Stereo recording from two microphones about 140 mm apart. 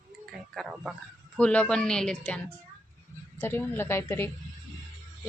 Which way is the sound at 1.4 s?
10° left (ahead or behind).